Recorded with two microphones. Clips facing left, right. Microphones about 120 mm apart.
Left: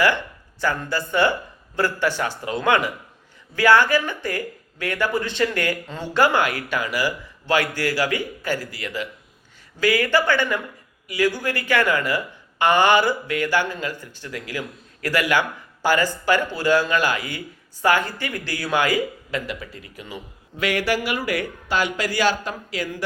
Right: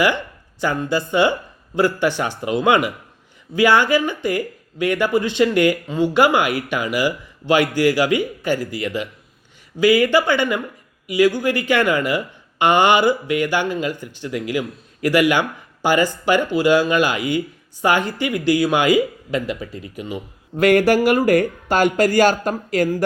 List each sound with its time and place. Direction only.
0.6 s speech: 20° right (ahead or behind)
20.6 s speech: 45° right (ahead or behind)